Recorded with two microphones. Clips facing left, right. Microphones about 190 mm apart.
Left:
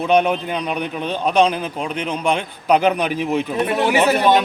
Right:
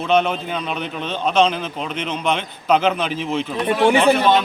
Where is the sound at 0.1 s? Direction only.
15° left (ahead or behind).